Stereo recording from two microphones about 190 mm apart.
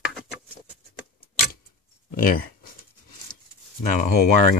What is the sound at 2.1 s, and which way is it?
Speech, 50° left (ahead or behind).